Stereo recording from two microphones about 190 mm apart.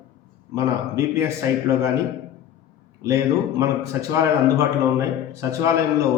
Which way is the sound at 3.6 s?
15° right (ahead or behind).